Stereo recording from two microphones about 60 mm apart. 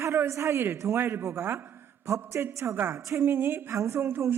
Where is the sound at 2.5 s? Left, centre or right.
Right.